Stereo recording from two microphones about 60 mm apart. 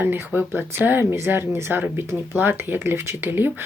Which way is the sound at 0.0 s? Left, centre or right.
Right.